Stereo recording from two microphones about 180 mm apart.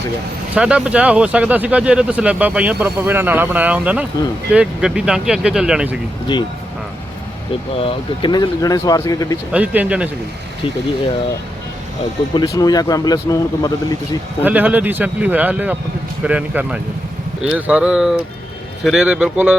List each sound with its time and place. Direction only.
0.5 s speech: 5° right (ahead or behind)
7.8 s speech: 30° left (ahead or behind)
9.5 s speech: 5° right (ahead or behind)
12.3 s speech: 20° left (ahead or behind)
14.4 s speech: 10° right (ahead or behind)